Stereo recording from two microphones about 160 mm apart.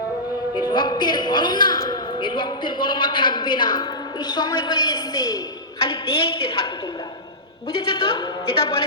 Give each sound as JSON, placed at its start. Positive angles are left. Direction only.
{"t": 0.5, "sound": "a man's voice", "side_deg": 30}
{"t": 7.8, "sound": "a man's voice", "side_deg": 30}